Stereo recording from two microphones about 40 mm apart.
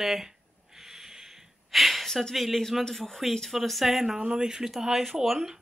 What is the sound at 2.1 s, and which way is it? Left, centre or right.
Speech, centre.